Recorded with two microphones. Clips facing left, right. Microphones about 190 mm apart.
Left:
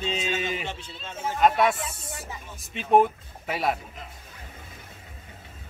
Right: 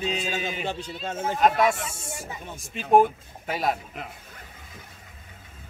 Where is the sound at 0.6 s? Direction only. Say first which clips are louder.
Right 6 dB; 35° right (ahead or behind).